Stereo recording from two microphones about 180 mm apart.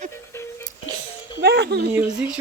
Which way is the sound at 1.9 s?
5° right (ahead or behind).